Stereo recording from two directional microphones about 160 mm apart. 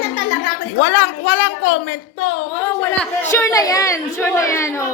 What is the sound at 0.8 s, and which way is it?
A woman's voice, 90° left.